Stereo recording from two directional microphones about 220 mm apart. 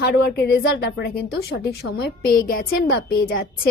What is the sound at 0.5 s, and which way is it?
A woman's voice, 45° left (ahead or behind).